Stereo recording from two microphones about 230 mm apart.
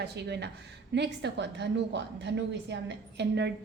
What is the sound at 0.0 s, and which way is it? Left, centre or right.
A woman's voice, right.